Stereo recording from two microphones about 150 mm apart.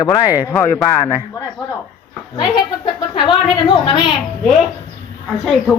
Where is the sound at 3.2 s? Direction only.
30° left (ahead or behind).